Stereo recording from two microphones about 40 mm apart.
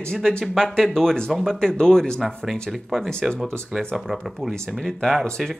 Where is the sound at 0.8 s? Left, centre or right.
Centre.